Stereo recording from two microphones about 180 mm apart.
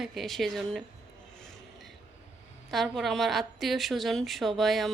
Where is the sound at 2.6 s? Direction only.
Centre (ahead or behind).